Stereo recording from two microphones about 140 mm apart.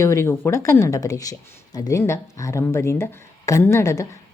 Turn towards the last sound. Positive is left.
turn(degrees=20)  # may be behind; listen again after turning